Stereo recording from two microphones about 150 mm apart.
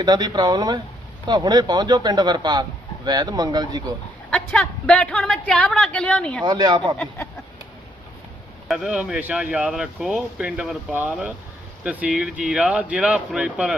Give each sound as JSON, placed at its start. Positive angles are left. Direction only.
{"t": 0.0, "sound": "a man's voice", "side_deg": -25}
{"t": 4.3, "sound": "a woman's voice", "side_deg": 10}
{"t": 6.4, "sound": "speech", "side_deg": -30}
{"t": 8.6, "sound": "speech", "side_deg": 0}